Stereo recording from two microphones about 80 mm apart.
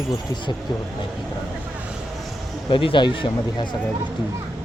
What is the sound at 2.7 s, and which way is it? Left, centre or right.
Speech, left.